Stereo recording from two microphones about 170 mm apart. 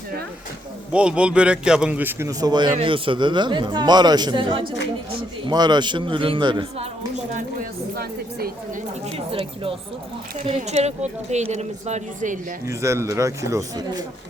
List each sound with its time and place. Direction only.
0.9 s a man's voice: 5° right (ahead or behind); by 6.8 s 25° right (ahead or behind)
7.3 s speech: 60° right (ahead or behind)
9.1 s speech: 35° right (ahead or behind); by 12.5 s 50° right (ahead or behind)
12.6 s a man's voice: 15° right (ahead or behind)